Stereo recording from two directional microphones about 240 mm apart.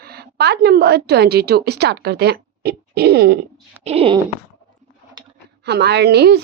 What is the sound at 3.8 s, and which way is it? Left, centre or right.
Speech, right.